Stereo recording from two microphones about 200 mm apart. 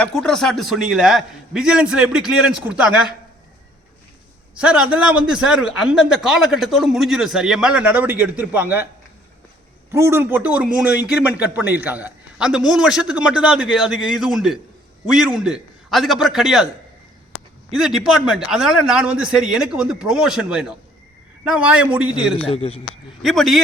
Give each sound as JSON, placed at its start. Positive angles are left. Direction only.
{"t": 0.0, "sound": "a man's voice", "side_deg": 5}
{"t": 4.5, "sound": "a man's voice", "side_deg": -5}
{"t": 9.9, "sound": "a man's voice", "side_deg": -10}
{"t": 22.4, "sound": "a man's voice", "side_deg": 30}
{"t": 23.2, "sound": "a man's voice", "side_deg": 0}